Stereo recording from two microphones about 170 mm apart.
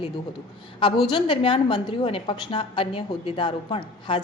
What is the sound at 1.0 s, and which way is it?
A woman's voice, 30° left (ahead or behind).